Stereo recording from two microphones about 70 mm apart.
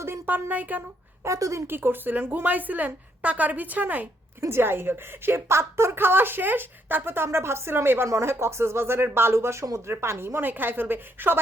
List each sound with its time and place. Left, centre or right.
0.3 s a woman's voice: right
1.2 s speech: right
1.6 s a woman's voice: right
4.4 s a woman's voice: right